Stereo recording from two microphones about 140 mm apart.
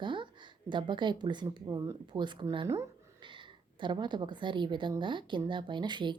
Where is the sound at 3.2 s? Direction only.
35° right (ahead or behind).